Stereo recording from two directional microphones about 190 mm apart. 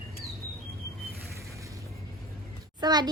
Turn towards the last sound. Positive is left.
turn(degrees=-20)  # may be behind; listen again after turning